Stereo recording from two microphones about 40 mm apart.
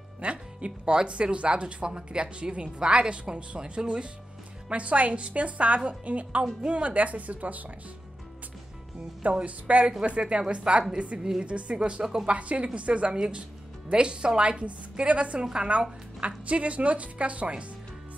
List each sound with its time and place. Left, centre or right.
0.2 s music: right
1.0 s speech: right
9.2 s speech: right